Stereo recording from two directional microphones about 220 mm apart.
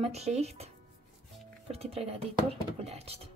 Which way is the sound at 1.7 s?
25° right (ahead or behind).